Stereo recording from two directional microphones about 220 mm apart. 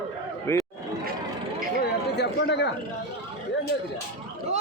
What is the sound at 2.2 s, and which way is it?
Speech, 50° left (ahead or behind).